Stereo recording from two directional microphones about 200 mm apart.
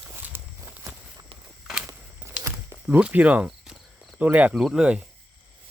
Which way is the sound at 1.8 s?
15° right (ahead or behind).